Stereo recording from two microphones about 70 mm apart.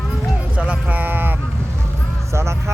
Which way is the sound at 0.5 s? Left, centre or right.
Centre.